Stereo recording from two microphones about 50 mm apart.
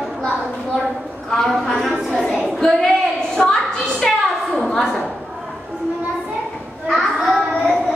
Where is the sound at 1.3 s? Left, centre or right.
Centre.